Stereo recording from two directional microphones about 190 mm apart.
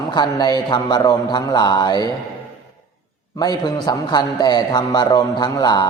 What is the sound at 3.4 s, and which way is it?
A man's voice, 20° left (ahead or behind).